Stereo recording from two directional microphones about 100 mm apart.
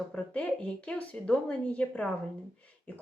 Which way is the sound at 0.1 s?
15° left (ahead or behind).